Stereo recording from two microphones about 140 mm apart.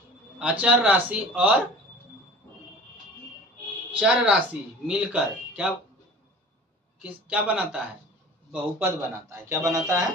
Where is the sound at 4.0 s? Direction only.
10° right (ahead or behind).